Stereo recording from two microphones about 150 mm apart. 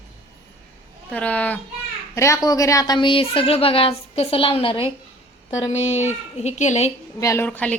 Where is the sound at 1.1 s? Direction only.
10° left (ahead or behind); by 6.9 s 50° left (ahead or behind).